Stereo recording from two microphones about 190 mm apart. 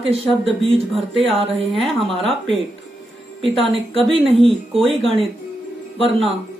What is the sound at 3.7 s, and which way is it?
Speech, 30° right (ahead or behind).